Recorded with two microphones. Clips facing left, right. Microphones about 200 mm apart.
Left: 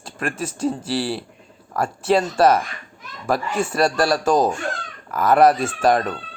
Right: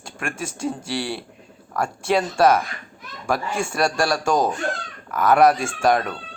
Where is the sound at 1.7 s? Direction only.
5° left (ahead or behind).